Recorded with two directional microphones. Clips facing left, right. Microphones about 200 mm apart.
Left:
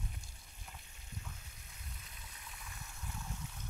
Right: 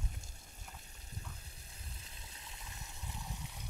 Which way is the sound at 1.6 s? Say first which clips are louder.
Even; 30° right (ahead or behind).